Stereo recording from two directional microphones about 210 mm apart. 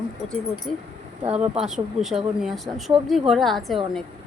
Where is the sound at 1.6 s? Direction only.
Centre (ahead or behind).